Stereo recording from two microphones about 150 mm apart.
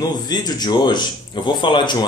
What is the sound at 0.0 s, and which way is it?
A man's voice, 25° left (ahead or behind).